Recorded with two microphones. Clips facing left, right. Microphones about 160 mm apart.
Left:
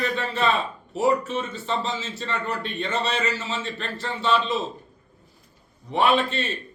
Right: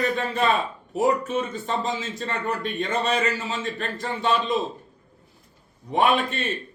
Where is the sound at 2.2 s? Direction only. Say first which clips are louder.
Right 1 dB; 45° right (ahead or behind).